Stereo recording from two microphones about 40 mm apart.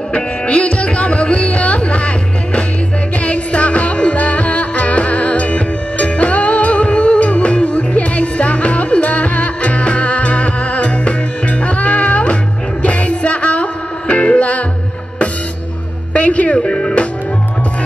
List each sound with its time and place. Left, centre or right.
0.1 s music: left
3.3 s music: left
16.1 s music: left
16.5 s music: left